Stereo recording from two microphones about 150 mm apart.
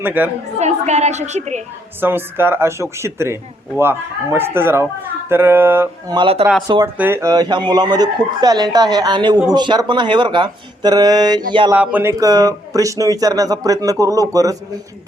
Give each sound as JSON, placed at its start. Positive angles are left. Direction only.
{"t": 0.0, "sound": "speech", "side_deg": -10}
{"t": 0.6, "sound": "a woman's voice", "side_deg": -50}
{"t": 2.0, "sound": "speech", "side_deg": -15}
{"t": 6.1, "sound": "speech", "side_deg": -35}
{"t": 6.8, "sound": "speech", "side_deg": -15}
{"t": 11.7, "sound": "speech", "side_deg": -10}
{"t": 12.2, "sound": "speech", "side_deg": -25}